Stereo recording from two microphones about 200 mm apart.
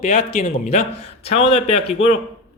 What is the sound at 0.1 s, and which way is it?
Speech, 35° left (ahead or behind).